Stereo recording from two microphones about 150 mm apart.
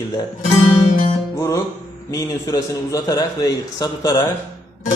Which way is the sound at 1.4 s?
20° left (ahead or behind).